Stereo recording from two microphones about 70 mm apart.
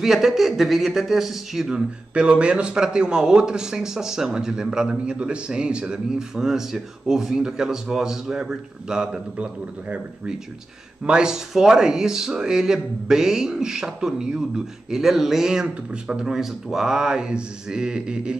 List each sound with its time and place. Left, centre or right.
0.0 s speech: centre